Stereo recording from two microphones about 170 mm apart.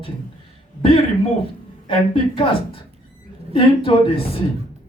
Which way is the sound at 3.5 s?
30° left (ahead or behind).